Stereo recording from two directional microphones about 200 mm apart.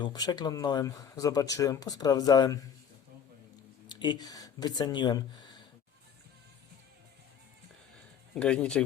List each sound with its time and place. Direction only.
0.0 s speech: 20° left (ahead or behind)
3.8 s speech: 20° left (ahead or behind)
8.4 s speech: 5° left (ahead or behind)